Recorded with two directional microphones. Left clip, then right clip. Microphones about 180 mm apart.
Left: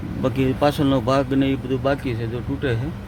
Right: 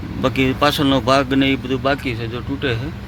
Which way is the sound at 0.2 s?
5° left (ahead or behind).